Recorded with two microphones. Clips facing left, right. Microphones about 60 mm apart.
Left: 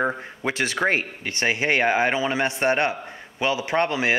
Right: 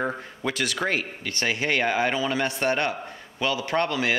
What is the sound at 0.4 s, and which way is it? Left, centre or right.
Speech, left.